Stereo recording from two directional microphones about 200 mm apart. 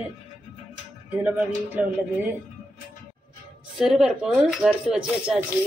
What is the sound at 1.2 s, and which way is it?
Speech, 10° right (ahead or behind).